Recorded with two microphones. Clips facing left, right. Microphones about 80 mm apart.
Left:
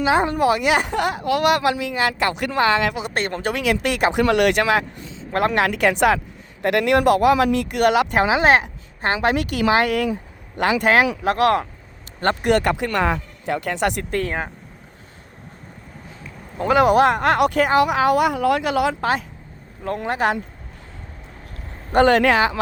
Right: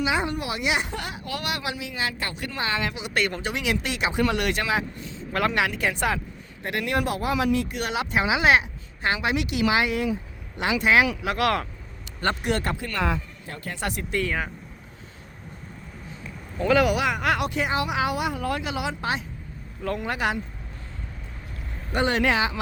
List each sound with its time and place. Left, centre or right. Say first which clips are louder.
0.0 s a woman's voice: left 8 dB; left
3.2 s speech: right 2 dB; left
3.4 s a woman's voice: left 6 dB; left
5.3 s speech: left 5 dB; left
5.7 s speech: left 8 dB; left
12.2 s speech: left 5 dB; left
12.5 s speech: left 8 dB; left
14.3 s speech: left 2 dB; left
16.6 s speech: left 4 dB; left
16.9 s a woman's voice: left 8 dB; left
20.1 s speech: left 7 dB; left
21.9 s speech: left 8 dB; left